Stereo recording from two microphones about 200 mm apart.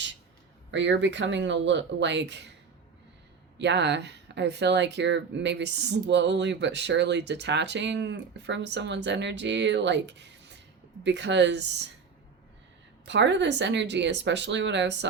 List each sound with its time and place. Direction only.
0.7 s speech: 65° right (ahead or behind)
3.6 s speech: 60° right (ahead or behind)
13.1 s speech: 60° right (ahead or behind)